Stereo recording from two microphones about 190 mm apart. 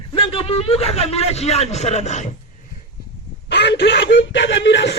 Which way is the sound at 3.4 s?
65° left (ahead or behind).